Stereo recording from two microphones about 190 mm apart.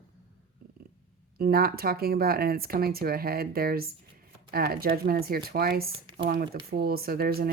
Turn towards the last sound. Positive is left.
turn(degrees=-50)  # may be behind; listen again after turning